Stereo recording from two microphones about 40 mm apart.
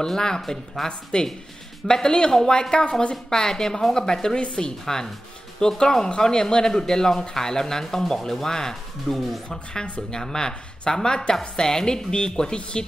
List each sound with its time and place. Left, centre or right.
0.0 s speech: centre
4.4 s speech: left
4.8 s speech: centre